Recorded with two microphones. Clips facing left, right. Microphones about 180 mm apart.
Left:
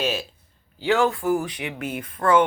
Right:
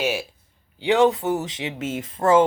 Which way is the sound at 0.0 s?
10° right (ahead or behind).